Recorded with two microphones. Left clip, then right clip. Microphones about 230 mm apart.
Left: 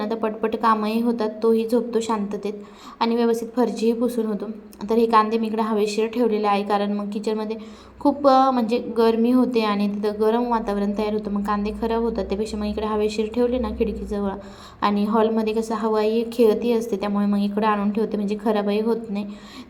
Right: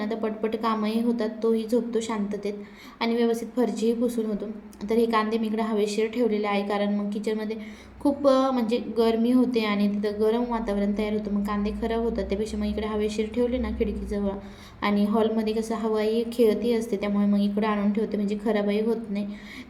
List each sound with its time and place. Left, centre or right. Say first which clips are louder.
0.0 s a woman's voice: left 4 dB; centre